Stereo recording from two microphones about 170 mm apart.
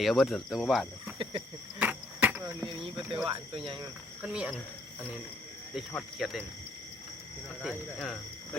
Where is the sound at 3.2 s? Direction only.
30° right (ahead or behind).